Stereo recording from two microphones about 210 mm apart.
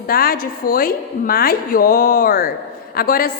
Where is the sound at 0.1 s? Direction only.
45° left (ahead or behind).